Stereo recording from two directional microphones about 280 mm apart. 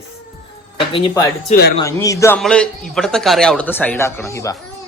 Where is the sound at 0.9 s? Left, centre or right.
Centre.